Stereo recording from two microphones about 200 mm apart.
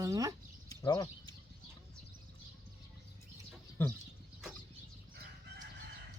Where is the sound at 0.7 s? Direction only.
20° left (ahead or behind).